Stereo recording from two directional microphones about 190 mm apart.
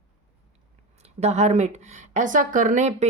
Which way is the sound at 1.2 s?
35° right (ahead or behind).